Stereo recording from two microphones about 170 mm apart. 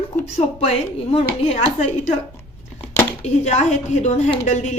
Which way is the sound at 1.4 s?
40° left (ahead or behind).